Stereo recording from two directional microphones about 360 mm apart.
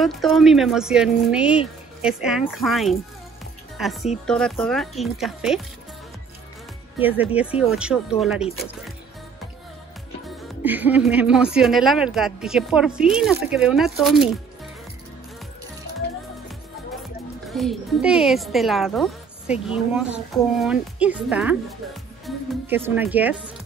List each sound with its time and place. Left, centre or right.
0.0 s a woman's voice: centre
7.0 s speech: centre
10.2 s speech: centre
17.5 s speech: centre